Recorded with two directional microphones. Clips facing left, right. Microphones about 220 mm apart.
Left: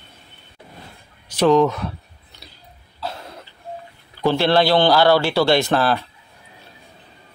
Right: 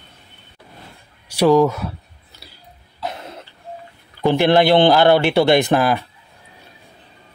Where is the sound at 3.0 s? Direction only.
20° right (ahead or behind).